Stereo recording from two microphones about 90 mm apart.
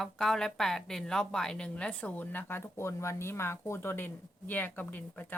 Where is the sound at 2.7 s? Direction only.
30° left (ahead or behind).